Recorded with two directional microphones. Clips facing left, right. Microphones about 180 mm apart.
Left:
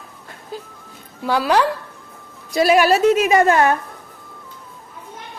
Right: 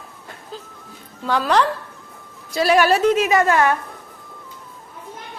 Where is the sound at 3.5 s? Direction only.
30° left (ahead or behind).